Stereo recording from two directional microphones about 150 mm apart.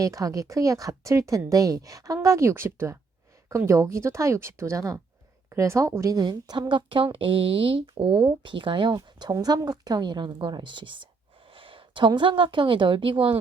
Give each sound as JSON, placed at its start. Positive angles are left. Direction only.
{"t": 0.0, "sound": "a woman's voice", "side_deg": -20}